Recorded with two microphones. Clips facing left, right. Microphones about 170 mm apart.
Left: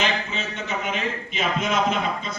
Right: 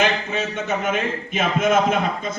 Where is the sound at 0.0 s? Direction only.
50° right (ahead or behind).